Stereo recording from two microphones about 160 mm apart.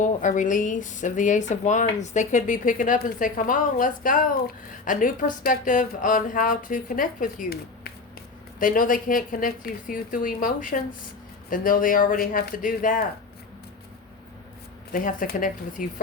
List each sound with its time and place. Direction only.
0.0 s speech: 50° left (ahead or behind)
14.9 s speech: 60° left (ahead or behind)